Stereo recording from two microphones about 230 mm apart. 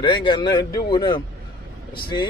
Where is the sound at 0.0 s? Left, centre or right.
Left.